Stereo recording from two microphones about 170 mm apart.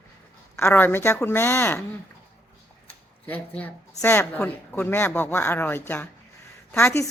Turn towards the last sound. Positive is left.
turn(degrees=15)  # may be behind; listen again after turning